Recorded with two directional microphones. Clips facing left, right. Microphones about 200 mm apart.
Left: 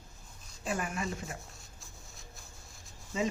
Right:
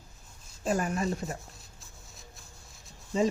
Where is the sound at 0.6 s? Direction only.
40° right (ahead or behind).